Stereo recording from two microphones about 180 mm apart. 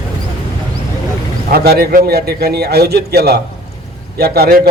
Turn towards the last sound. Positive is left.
turn(degrees=-60)  # may be behind; listen again after turning